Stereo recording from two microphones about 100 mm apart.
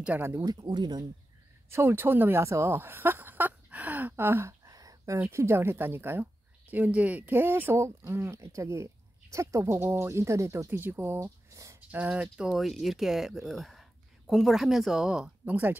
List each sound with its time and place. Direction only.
0.2 s speech: 25° right (ahead or behind)
0.5 s speech: 45° right (ahead or behind)
1.7 s speech: 25° right (ahead or behind)
11.1 s a sound: 35° right (ahead or behind)
11.9 s speech: 15° right (ahead or behind)